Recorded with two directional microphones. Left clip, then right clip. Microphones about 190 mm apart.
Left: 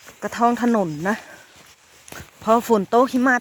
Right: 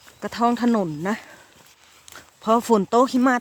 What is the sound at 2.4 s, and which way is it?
Speech, 20° right (ahead or behind).